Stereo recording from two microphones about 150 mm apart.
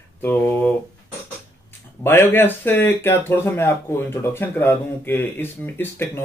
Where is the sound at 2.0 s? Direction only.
15° left (ahead or behind).